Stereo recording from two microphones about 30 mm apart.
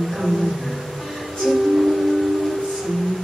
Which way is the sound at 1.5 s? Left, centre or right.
Centre.